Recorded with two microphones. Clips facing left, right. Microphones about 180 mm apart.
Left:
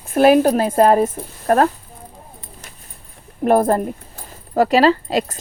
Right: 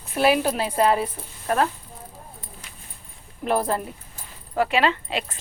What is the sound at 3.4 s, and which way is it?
Speech, 50° left (ahead or behind).